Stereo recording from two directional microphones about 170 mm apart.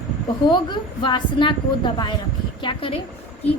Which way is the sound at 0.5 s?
25° left (ahead or behind).